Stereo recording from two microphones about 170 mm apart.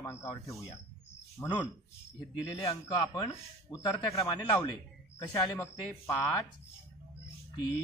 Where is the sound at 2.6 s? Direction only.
20° left (ahead or behind).